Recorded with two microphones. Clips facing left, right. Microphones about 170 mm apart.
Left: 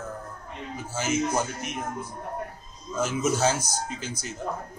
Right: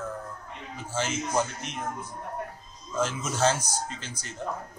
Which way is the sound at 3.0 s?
10° left (ahead or behind).